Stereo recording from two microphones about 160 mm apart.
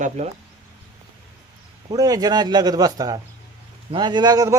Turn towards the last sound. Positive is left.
turn(degrees=-25)  # may be behind; listen again after turning